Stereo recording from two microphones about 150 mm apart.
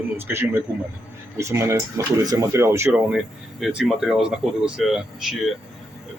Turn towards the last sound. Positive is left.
turn(degrees=-5)  # may be behind; listen again after turning